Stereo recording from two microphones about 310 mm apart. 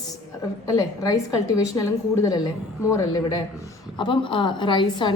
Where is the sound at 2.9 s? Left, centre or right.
Centre.